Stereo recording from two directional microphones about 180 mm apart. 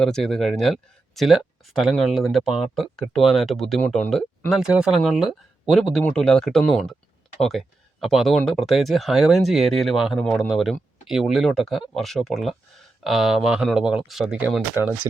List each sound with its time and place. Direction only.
0.0 s speech: 5° left (ahead or behind)